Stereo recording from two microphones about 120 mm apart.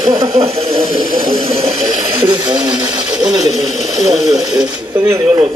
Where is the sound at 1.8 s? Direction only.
40° right (ahead or behind).